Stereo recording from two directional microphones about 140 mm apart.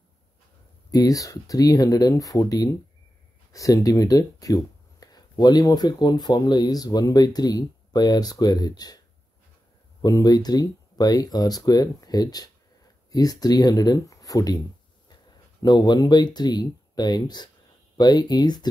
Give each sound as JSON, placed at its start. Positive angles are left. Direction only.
{"t": 0.9, "sound": "speech", "side_deg": 25}
{"t": 10.0, "sound": "speech", "side_deg": 25}
{"t": 15.6, "sound": "speech", "side_deg": 30}